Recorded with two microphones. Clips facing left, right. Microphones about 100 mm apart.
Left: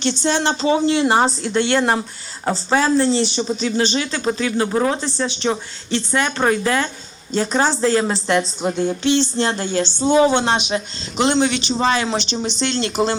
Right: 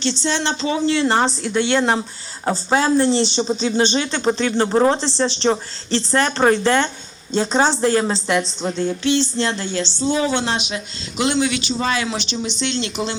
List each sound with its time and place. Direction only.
0.0 s speech: 50° left (ahead or behind)
0.8 s a sound: 15° left (ahead or behind)
1.5 s speech: 15° right (ahead or behind)
1.8 s a sound: 15° left (ahead or behind)
2.5 s speech: 10° right (ahead or behind)
8.6 s a sound: 15° left (ahead or behind)
9.4 s speech: 45° left (ahead or behind)
10.2 s speech: 20° left (ahead or behind)
10.5 s speech: 50° left (ahead or behind)
11.2 s speech: 35° left (ahead or behind)